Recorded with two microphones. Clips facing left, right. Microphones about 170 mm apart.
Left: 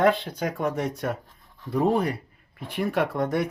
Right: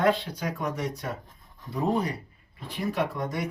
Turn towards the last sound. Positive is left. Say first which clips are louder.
# left 5 dB
turn(degrees=60)  # may be behind; listen again after turning